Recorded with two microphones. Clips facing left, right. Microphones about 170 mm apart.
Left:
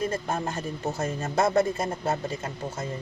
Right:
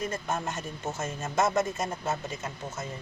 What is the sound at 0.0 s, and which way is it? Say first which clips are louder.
Speech: left 3 dB; 30° left (ahead or behind).